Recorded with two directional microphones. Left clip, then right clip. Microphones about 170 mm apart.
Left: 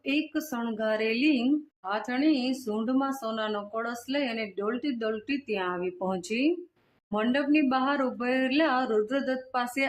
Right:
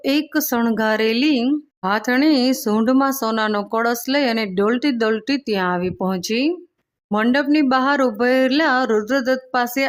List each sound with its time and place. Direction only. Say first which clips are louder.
0.0 s a woman's voice: right 10 dB; 50° right (ahead or behind)